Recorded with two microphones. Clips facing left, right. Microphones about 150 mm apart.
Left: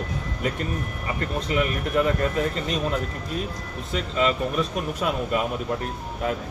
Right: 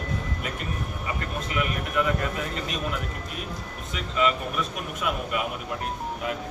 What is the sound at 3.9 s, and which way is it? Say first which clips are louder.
Speech: left 2 dB; 35° left (ahead or behind).